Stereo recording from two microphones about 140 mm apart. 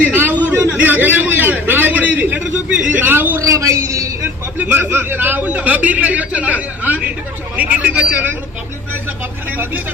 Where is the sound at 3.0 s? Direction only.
15° right (ahead or behind).